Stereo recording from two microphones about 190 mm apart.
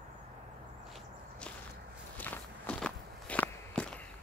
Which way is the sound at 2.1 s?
10° left (ahead or behind).